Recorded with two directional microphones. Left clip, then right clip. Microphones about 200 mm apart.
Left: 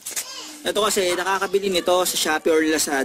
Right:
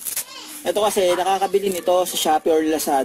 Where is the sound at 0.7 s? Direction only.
10° left (ahead or behind).